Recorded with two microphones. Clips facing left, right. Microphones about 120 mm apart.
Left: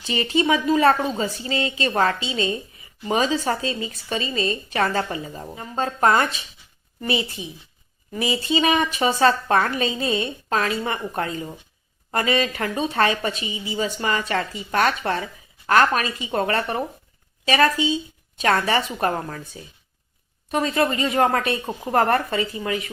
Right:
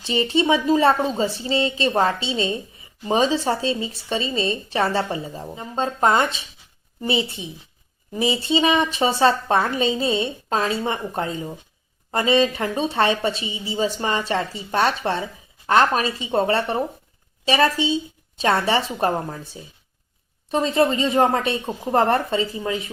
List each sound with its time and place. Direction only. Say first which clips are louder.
0.0 s a woman's voice: right 2 dB; 30° right (ahead or behind)
20.5 s a woman's voice: right 2 dB; 30° right (ahead or behind)